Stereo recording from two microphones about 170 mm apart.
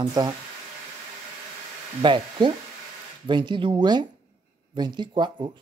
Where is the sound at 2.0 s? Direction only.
30° right (ahead or behind).